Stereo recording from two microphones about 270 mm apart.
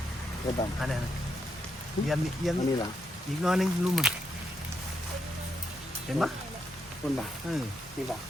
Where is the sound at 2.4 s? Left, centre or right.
Centre.